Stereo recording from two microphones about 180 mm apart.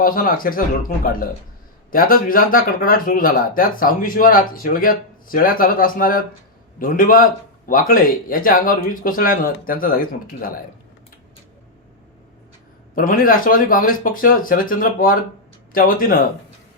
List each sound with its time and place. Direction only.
0.0 s speech: 50° left (ahead or behind)
13.0 s speech: 50° left (ahead or behind)